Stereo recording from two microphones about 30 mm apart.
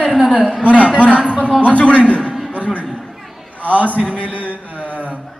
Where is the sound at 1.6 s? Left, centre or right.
Left.